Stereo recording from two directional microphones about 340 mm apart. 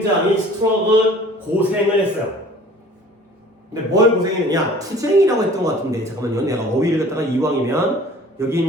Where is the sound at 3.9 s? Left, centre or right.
Centre.